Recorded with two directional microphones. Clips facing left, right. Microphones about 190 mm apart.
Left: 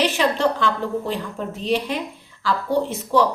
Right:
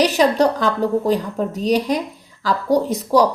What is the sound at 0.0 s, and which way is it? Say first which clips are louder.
A woman's voice: right 5 dB; 40° right (ahead or behind).